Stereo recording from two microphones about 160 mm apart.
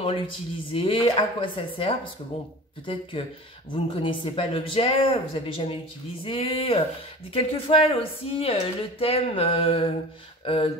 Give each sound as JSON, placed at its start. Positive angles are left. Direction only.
{"t": 0.0, "sound": "speech", "side_deg": 35}